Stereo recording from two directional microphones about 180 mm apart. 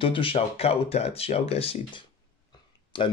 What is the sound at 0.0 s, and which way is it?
Speech, 30° left (ahead or behind).